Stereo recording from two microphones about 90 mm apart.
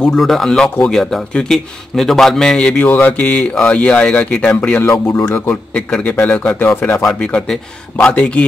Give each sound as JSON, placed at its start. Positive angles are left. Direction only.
{"t": 0.0, "sound": "a man's voice", "side_deg": 5}
{"t": 2.8, "sound": "speech", "side_deg": 20}
{"t": 5.5, "sound": "speech", "side_deg": 10}
{"t": 7.1, "sound": "speech", "side_deg": 10}